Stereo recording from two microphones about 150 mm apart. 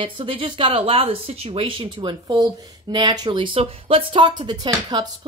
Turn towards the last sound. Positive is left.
turn(degrees=-25)  # may be behind; listen again after turning